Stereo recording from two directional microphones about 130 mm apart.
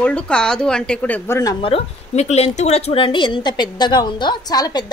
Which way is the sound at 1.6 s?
50° left (ahead or behind).